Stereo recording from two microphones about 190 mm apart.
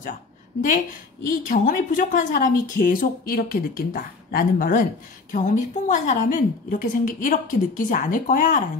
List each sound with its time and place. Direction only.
1.5 s a woman's voice: 45° left (ahead or behind)